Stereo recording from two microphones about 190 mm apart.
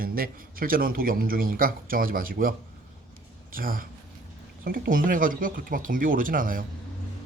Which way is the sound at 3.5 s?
50° right (ahead or behind).